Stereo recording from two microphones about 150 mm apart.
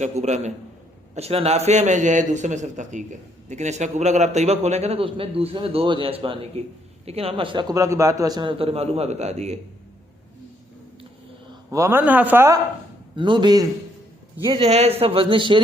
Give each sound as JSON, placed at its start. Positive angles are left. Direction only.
{"t": 0.0, "sound": "a man's voice", "side_deg": -50}
{"t": 7.7, "sound": "a man's voice", "side_deg": -20}
{"t": 11.7, "sound": "a man's voice", "side_deg": -15}
{"t": 13.1, "sound": "a man's voice", "side_deg": -35}